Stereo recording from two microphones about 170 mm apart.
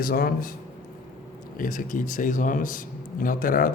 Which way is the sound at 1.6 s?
50° left (ahead or behind).